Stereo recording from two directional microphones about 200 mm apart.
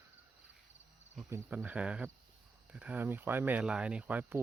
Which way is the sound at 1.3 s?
10° right (ahead or behind).